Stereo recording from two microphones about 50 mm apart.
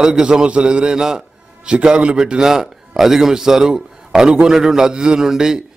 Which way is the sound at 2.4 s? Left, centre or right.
Centre.